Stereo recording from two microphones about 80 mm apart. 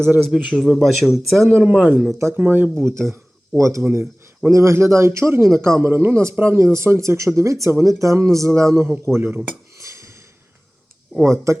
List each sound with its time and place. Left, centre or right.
0.1 s a man's voice: centre
0.5 s speech: centre
1.6 s a man's voice: centre
2.1 s speech: right
2.4 s speech: right
9.7 s a sound: right
11.2 s speech: right